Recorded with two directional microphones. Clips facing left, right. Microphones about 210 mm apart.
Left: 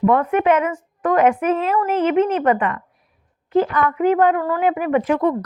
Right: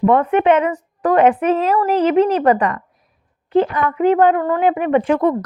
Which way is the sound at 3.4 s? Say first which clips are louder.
Right 2 dB; 25° right (ahead or behind).